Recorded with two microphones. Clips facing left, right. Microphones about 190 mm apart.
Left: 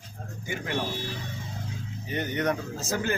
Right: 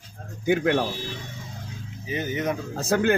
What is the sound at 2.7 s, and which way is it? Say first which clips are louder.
Speech: right 7 dB; 60° right (ahead or behind).